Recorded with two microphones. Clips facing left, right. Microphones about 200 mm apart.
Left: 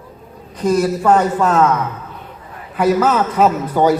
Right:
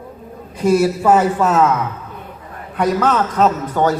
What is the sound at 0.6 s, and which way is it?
A man's voice, 10° right (ahead or behind).